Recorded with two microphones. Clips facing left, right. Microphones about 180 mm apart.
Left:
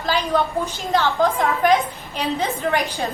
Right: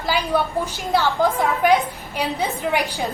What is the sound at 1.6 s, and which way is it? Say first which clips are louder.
A woman's voice: right 1 dB; 10° right (ahead or behind).